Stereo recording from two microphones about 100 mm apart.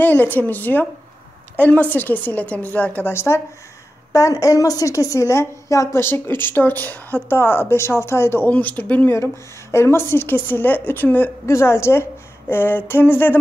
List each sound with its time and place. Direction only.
0.0 s a woman's voice: 20° left (ahead or behind)